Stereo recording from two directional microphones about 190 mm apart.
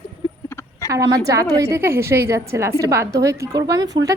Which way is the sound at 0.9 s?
15° right (ahead or behind).